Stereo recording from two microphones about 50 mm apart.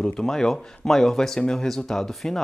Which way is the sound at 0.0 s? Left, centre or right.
Centre.